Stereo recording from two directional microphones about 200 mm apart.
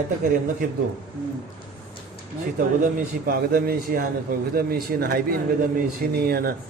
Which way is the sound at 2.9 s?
45° right (ahead or behind).